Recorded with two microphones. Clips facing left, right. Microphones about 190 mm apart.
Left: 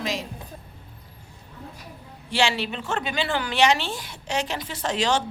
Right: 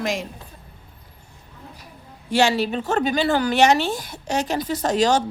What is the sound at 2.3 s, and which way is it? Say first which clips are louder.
A woman's voice: right 6 dB; 40° right (ahead or behind).